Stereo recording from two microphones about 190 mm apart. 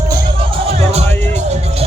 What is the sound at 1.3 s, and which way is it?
Music, 35° right (ahead or behind).